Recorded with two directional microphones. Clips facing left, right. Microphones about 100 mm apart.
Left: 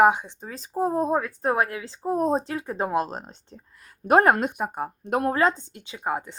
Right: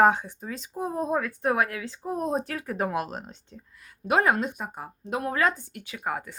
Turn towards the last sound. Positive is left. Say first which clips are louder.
# left 3 dB
turn(degrees=25)  # may be behind; listen again after turning